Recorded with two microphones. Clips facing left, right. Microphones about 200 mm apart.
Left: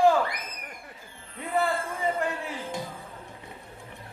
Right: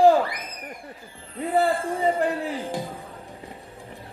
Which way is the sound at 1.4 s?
35° right (ahead or behind).